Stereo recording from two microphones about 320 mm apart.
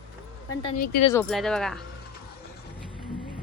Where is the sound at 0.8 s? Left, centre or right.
Left.